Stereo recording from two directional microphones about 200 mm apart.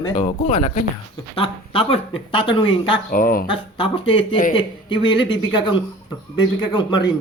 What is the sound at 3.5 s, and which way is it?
Speech, 25° left (ahead or behind).